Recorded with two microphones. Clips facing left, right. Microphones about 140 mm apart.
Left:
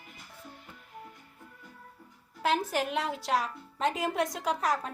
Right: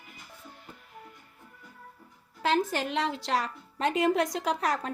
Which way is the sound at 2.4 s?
5° left (ahead or behind).